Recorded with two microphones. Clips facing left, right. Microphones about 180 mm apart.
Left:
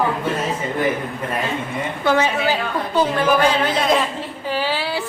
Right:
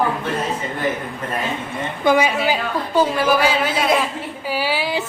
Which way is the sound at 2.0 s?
10° right (ahead or behind).